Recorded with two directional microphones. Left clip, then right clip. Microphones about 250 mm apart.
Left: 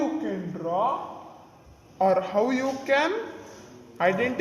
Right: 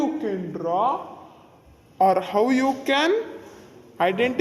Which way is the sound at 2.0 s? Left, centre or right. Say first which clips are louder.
Right 3 dB; right.